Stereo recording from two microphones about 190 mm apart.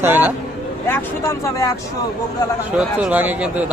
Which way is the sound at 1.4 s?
15° left (ahead or behind).